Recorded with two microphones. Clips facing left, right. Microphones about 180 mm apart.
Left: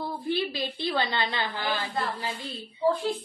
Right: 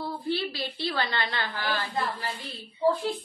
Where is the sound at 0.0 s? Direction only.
15° left (ahead or behind).